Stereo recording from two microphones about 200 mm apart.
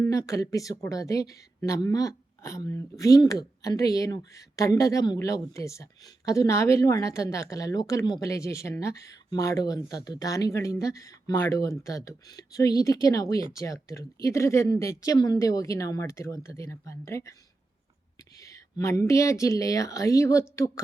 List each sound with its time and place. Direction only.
0.0 s speech: 15° left (ahead or behind)
18.3 s speech: 15° left (ahead or behind)